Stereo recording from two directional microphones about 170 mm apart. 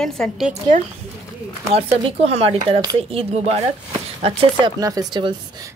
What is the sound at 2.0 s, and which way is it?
Speech, 35° right (ahead or behind).